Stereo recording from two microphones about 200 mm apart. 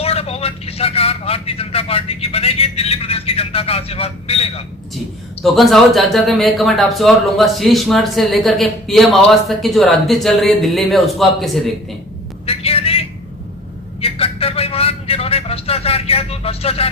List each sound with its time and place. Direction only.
0.0 s speech: 30° left (ahead or behind)
5.4 s speech: centre (ahead or behind)
12.5 s vehicle: 30° left (ahead or behind)